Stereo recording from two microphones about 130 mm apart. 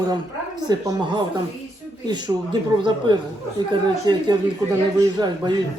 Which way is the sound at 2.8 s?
40° right (ahead or behind).